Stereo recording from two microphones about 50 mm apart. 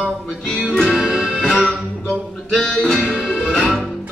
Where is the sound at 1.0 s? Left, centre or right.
Centre.